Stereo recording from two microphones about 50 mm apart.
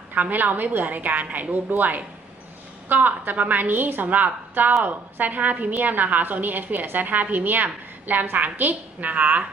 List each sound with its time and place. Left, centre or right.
0.1 s a woman's voice: right